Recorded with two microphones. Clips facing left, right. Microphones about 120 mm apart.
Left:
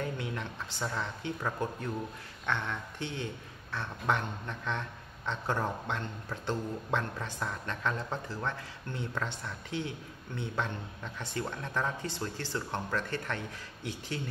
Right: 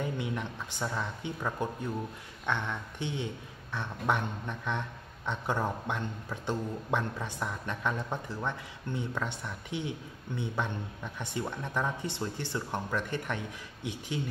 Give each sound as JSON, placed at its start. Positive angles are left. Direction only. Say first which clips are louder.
{"t": 0.0, "sound": "speech", "louder": "right 2 dB", "side_deg": -15}